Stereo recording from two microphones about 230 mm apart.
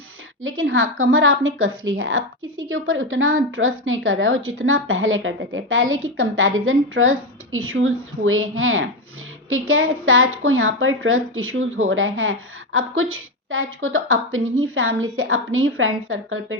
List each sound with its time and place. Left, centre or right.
0.4 s a woman's voice: right